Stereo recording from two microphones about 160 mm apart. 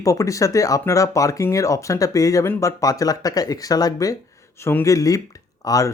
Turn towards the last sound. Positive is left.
turn(degrees=20)  # may be behind; listen again after turning